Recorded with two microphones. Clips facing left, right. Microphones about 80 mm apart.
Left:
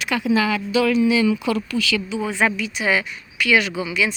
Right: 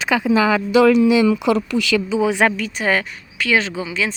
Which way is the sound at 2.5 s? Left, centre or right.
Right.